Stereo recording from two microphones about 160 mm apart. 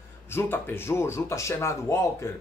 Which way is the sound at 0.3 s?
15° left (ahead or behind).